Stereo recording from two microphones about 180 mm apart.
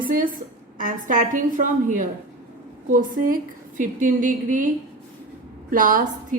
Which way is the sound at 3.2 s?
50° right (ahead or behind).